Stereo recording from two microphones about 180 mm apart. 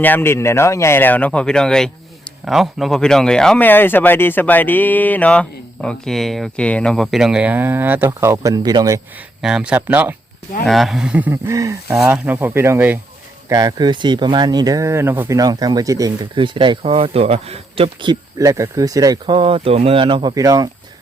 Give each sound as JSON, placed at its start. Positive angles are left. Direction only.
{"t": 0.0, "sound": "speech", "side_deg": 10}
{"t": 9.4, "sound": "speech", "side_deg": -5}